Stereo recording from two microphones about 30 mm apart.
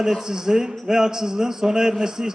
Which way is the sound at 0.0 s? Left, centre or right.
Centre.